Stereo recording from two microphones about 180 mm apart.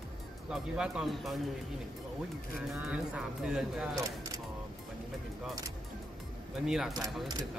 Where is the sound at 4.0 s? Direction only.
20° right (ahead or behind).